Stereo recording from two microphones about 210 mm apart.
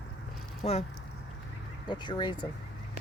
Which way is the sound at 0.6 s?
30° left (ahead or behind).